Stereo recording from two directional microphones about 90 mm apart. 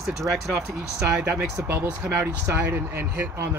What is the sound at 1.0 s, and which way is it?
Speech, 30° right (ahead or behind).